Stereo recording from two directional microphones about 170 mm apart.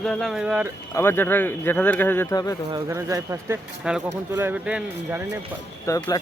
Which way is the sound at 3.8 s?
5° right (ahead or behind).